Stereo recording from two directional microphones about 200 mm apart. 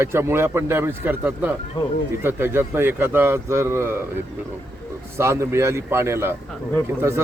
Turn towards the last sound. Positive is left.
turn(degrees=-15)  # may be behind; listen again after turning